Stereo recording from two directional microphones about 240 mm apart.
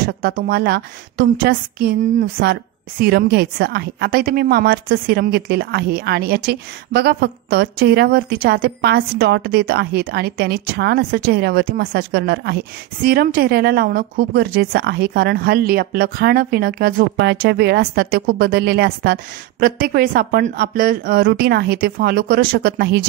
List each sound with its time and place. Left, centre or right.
0.0 s a woman's voice: right